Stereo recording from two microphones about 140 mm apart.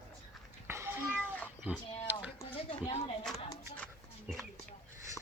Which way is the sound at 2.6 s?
45° left (ahead or behind).